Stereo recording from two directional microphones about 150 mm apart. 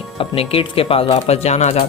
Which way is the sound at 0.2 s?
40° left (ahead or behind).